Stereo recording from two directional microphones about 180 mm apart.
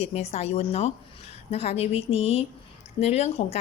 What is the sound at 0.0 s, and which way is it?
A woman's voice, 35° left (ahead or behind).